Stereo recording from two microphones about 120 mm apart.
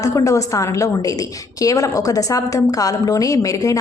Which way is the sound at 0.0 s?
30° left (ahead or behind).